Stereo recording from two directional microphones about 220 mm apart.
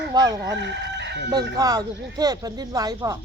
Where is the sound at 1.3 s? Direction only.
15° right (ahead or behind).